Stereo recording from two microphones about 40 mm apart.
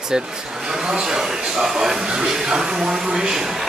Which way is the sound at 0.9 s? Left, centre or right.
Centre.